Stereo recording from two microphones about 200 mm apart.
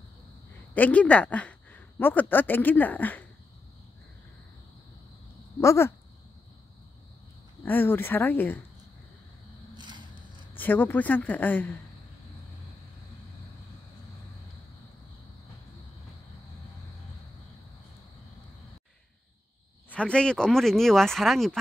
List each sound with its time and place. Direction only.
0.7 s speech: 5° left (ahead or behind)
5.6 s speech: 15° left (ahead or behind)
7.6 s speech: 10° left (ahead or behind)
9.8 s a sound: 20° right (ahead or behind)
10.5 s speech: 10° left (ahead or behind)
19.9 s speech: 5° left (ahead or behind)